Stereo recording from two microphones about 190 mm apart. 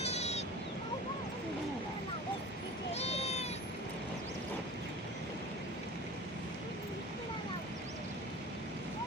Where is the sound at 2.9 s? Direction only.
35° left (ahead or behind).